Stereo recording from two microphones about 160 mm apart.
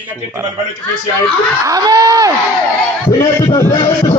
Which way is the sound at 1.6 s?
25° right (ahead or behind).